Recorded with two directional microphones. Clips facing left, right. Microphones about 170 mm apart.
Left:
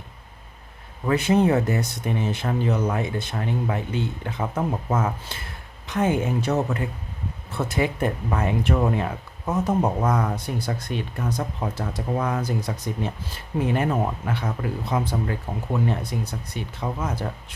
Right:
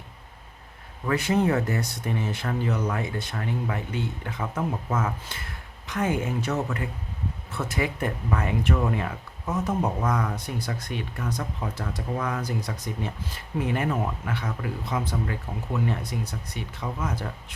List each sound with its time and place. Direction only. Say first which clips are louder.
1.0 s speech: left 4 dB; 20° left (ahead or behind)